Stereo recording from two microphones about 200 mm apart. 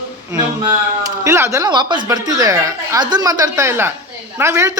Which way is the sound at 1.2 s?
15° right (ahead or behind).